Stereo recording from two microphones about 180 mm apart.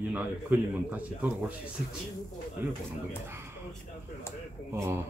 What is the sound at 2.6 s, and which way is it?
Speech, 10° right (ahead or behind).